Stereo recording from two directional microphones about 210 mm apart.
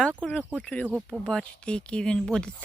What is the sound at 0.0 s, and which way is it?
Speech, 5° left (ahead or behind).